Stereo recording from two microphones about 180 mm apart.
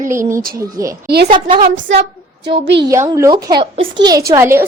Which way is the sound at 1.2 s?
30° right (ahead or behind).